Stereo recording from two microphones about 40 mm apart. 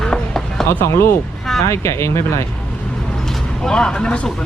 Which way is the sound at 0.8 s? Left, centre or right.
Left.